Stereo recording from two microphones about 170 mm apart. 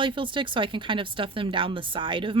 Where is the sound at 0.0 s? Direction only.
30° right (ahead or behind).